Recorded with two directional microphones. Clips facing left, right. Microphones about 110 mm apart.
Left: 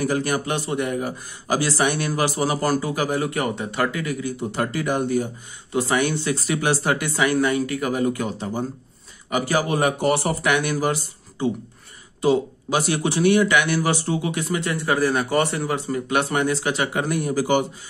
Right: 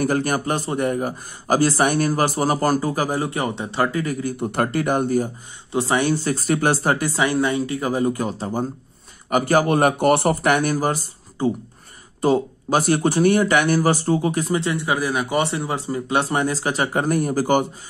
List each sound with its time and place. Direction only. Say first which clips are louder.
0.0 s speech: right 2 dB; 45° right (ahead or behind); by 3.9 s 25° right (ahead or behind)
3.9 s speech: right 3 dB; 40° right (ahead or behind)
5.7 s speech: right 2 dB; 30° right (ahead or behind)
9.3 s speech: right 4 dB; 50° right (ahead or behind)